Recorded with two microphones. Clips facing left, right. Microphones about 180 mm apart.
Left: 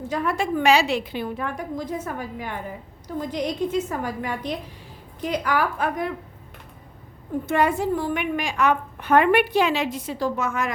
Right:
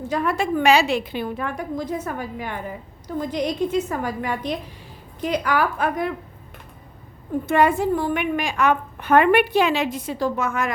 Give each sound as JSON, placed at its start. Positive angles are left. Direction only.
{"t": 0.1, "sound": "a woman's voice", "side_deg": -70}
{"t": 7.4, "sound": "a woman's voice", "side_deg": -65}